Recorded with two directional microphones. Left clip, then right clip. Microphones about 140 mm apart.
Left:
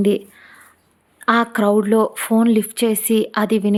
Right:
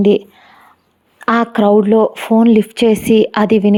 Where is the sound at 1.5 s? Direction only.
15° right (ahead or behind).